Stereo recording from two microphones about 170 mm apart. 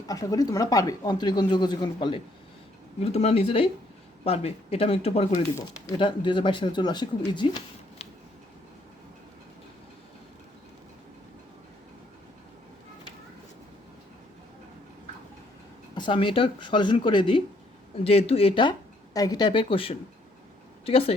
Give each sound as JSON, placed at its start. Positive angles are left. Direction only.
{"t": 0.1, "sound": "speech", "side_deg": 20}
{"t": 16.0, "sound": "speech", "side_deg": 30}